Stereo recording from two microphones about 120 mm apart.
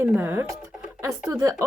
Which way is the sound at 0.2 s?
20° right (ahead or behind).